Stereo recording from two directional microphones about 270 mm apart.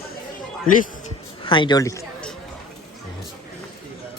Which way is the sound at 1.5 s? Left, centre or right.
Centre.